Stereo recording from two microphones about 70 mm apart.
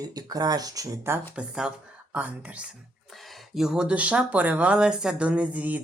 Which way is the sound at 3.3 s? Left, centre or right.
Centre.